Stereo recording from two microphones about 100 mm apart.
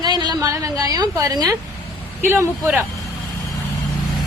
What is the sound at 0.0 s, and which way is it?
A woman's voice, 45° right (ahead or behind).